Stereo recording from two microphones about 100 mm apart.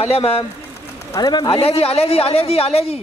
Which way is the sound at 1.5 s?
75° left (ahead or behind).